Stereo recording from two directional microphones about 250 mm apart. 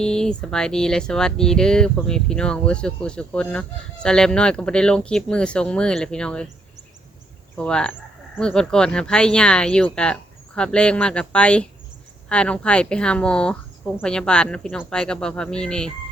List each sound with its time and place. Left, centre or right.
0.0 s speech: centre
7.5 s speech: centre